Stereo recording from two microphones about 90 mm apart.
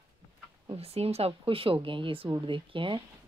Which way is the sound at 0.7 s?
90° right.